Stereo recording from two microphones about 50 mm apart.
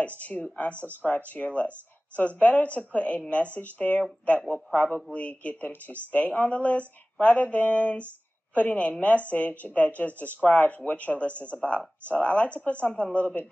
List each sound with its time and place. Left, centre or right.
0.0 s speech: left
5.1 s speech: left